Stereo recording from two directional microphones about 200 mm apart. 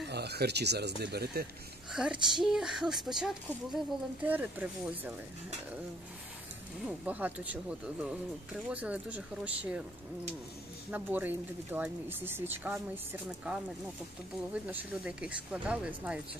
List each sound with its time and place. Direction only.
0.0 s speech: 55° right (ahead or behind)
1.9 s speech: centre (ahead or behind)
6.9 s speech: 10° right (ahead or behind)
8.6 s speech: 5° right (ahead or behind)
10.9 s speech: 10° right (ahead or behind)